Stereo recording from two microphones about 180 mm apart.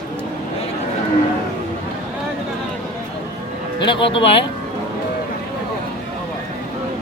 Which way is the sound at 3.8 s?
30° left (ahead or behind).